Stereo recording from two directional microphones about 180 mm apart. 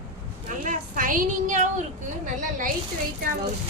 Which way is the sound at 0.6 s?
45° right (ahead or behind).